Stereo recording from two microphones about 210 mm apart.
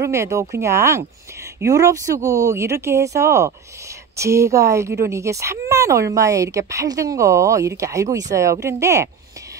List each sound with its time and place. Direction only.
0.0 s speech: 15° right (ahead or behind)